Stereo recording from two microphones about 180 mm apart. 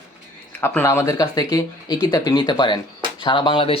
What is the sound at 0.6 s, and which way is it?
Speech, 10° left (ahead or behind).